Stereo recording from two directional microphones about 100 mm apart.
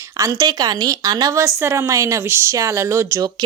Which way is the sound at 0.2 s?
35° right (ahead or behind).